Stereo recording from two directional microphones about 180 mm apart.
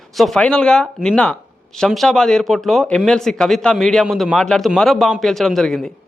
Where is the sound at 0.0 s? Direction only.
Centre (ahead or behind).